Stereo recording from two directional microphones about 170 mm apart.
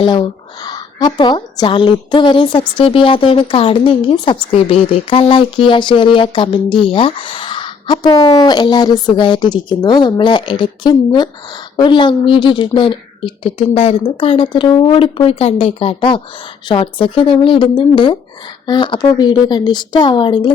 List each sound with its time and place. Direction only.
0.0 s a woman's voice: 25° left (ahead or behind)